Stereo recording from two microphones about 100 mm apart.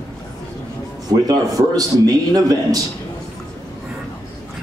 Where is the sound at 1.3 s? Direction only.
40° right (ahead or behind).